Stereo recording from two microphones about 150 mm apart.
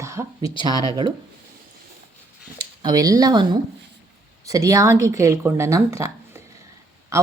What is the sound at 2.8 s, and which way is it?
Speech, 25° right (ahead or behind).